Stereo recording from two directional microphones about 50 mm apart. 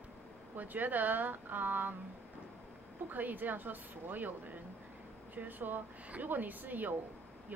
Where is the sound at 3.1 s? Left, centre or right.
Right.